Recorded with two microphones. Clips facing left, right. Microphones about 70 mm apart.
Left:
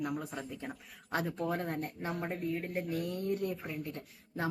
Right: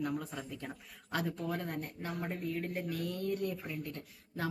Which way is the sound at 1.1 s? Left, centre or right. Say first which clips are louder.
Left 2 dB; left.